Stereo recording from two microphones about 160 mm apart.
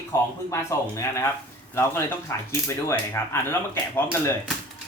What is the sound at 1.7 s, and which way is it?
Speech, 15° left (ahead or behind).